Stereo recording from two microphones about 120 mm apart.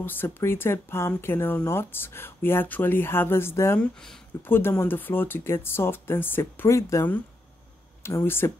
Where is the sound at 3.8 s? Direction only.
5° left (ahead or behind).